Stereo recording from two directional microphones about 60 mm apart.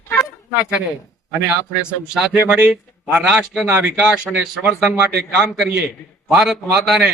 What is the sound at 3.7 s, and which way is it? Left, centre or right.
Speech, right.